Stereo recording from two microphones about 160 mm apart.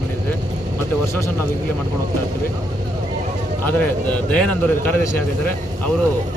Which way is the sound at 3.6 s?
10° left (ahead or behind).